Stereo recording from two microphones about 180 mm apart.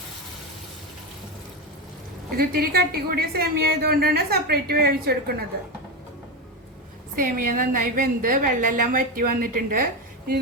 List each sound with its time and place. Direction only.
2.4 s a woman's voice: 60° right (ahead or behind)
7.2 s a woman's voice: 50° right (ahead or behind)